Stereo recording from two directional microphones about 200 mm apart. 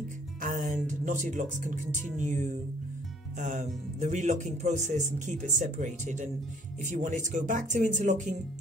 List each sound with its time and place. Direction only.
0.4 s music: 40° right (ahead or behind)
0.8 s speech: 40° right (ahead or behind)